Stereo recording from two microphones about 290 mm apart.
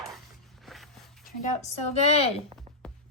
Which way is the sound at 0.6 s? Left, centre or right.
Centre.